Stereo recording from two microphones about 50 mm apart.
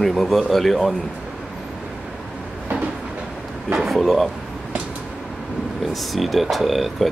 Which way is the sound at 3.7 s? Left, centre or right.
Centre.